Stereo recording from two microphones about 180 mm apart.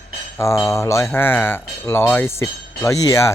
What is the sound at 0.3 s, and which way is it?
Speech, 15° left (ahead or behind).